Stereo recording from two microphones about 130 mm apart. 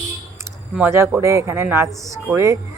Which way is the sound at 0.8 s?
20° right (ahead or behind).